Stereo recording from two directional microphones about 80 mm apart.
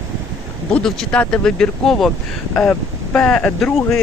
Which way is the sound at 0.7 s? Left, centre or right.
Centre.